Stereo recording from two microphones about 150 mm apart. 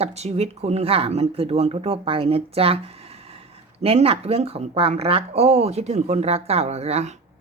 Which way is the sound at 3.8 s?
40° right (ahead or behind).